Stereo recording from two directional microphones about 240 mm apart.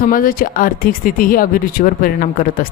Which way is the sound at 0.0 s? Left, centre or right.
Left.